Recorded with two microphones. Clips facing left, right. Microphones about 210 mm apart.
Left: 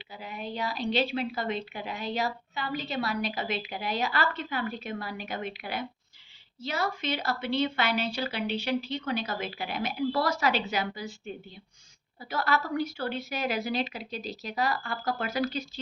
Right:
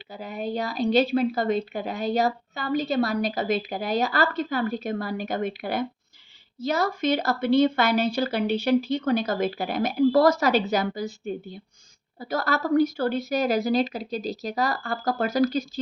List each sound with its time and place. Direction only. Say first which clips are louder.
0.1 s a woman's voice: right 7 dB; 40° right (ahead or behind)